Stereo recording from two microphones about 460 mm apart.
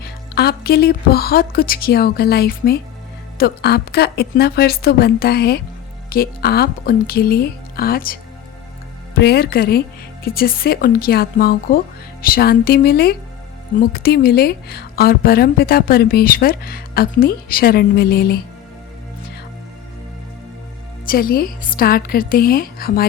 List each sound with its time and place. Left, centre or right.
0.0 s a woman's voice: left
21.1 s a woman's voice: centre